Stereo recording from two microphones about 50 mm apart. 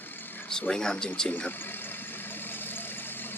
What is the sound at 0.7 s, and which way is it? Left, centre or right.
Speech, centre.